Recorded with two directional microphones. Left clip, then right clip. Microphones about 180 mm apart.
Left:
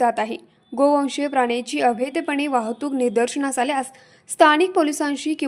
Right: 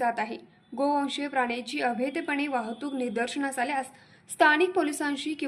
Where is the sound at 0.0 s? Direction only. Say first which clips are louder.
Left 8 dB; 45° left (ahead or behind).